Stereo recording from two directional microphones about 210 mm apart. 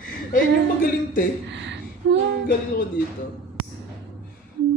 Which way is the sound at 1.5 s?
60° right (ahead or behind).